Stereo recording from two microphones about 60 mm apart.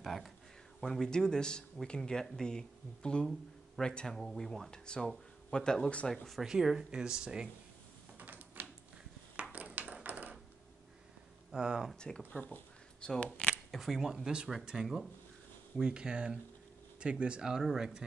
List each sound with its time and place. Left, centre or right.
0.0 s a sound: centre
0.7 s speech: centre
6.4 s speech: centre
8.2 s door: right
9.4 s ping: right
10.0 s a sound: right
11.5 s speech: centre
12.4 s speech: left
13.0 s speech: centre
13.7 s speech: centre